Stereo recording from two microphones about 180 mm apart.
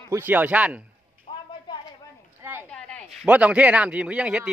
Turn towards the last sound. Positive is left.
turn(degrees=-5)  # may be behind; listen again after turning